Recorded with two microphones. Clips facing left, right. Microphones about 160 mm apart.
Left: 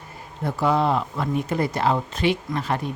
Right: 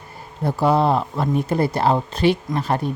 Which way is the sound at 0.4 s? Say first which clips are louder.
Right 3 dB; 35° right (ahead or behind).